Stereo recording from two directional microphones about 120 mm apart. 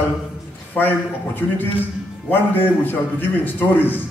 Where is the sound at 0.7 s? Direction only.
15° left (ahead or behind).